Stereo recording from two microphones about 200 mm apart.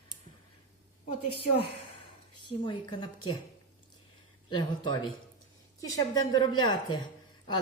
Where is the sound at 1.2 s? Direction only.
30° left (ahead or behind).